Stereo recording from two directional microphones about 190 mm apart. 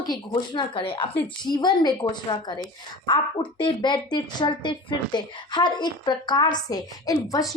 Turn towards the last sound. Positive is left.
turn(degrees=20)  # may be behind; listen again after turning